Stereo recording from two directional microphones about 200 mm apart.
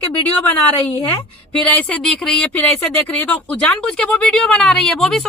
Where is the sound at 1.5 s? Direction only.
5° left (ahead or behind).